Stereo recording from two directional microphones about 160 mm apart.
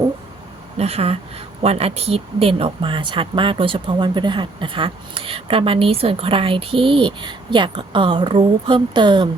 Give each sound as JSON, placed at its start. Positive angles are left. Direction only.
{"t": 0.8, "sound": "speech", "side_deg": -40}